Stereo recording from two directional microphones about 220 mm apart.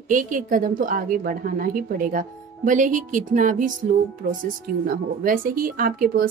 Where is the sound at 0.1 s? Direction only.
35° right (ahead or behind).